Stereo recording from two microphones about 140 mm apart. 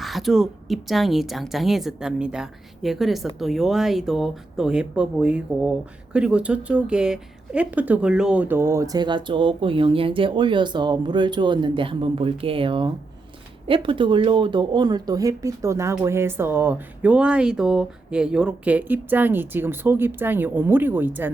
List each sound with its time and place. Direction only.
0.0 s speech: centre (ahead or behind)